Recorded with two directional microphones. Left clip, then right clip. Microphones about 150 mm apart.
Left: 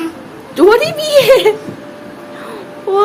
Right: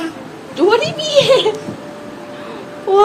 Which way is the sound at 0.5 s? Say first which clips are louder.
Left 4 dB; 55° left (ahead or behind).